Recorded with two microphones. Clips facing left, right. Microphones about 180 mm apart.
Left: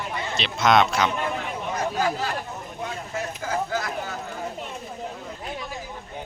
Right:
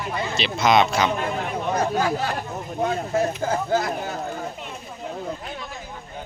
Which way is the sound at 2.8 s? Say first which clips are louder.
Right 10 dB; 40° right (ahead or behind).